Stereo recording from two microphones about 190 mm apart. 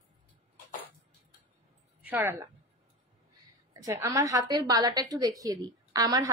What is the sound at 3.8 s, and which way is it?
A woman's voice, 15° right (ahead or behind).